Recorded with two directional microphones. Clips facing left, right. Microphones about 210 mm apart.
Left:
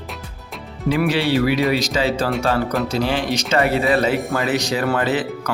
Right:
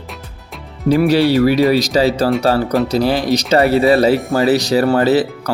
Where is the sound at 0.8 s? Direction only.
40° right (ahead or behind).